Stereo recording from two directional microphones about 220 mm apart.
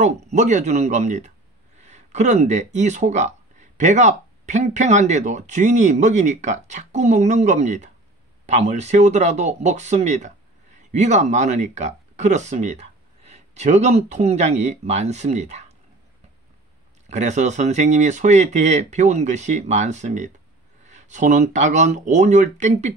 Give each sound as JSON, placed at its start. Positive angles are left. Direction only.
{"t": 0.0, "sound": "speech", "side_deg": -30}
{"t": 17.1, "sound": "speech", "side_deg": -30}